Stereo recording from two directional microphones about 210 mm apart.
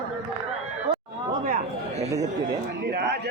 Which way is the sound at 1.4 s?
40° right (ahead or behind).